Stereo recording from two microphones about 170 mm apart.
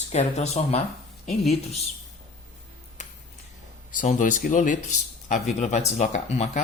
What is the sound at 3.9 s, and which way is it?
Speech, 50° left (ahead or behind).